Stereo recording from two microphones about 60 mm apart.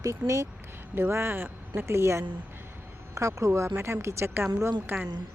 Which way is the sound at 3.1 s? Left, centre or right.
Right.